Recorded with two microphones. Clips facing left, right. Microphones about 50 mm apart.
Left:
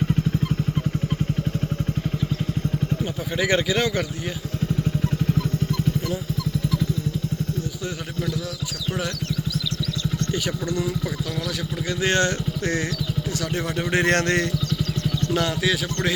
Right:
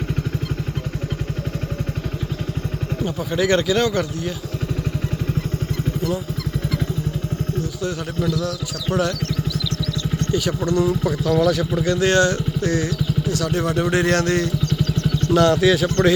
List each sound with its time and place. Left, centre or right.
3.0 s speech: centre
10.3 s speech: centre
11.0 s speech: centre
11.9 s speech: centre
13.4 s speech: centre
13.9 s speech: left
15.4 s speech: centre